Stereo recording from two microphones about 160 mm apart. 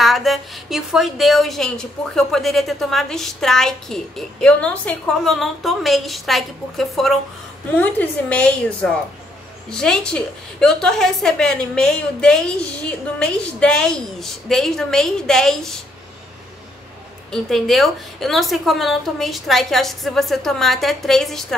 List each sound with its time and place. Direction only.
0.0 s a woman's voice: centre (ahead or behind)
17.3 s a woman's voice: centre (ahead or behind)